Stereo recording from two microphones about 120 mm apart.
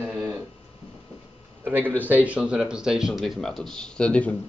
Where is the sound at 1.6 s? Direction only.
15° right (ahead or behind).